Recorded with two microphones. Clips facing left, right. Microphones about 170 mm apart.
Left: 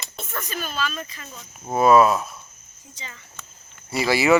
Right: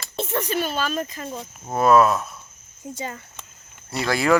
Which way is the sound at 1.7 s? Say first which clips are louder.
Left 1 dB; 5° left (ahead or behind).